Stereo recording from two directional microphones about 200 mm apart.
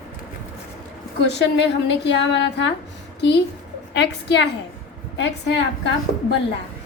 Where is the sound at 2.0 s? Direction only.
60° left (ahead or behind).